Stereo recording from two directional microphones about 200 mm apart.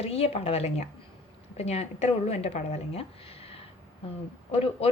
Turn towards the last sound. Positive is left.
turn(degrees=30)  # may be behind; listen again after turning